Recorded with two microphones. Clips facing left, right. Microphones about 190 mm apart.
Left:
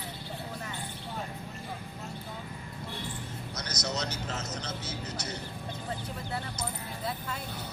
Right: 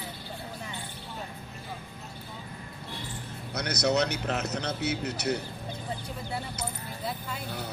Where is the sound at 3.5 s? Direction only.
60° right (ahead or behind).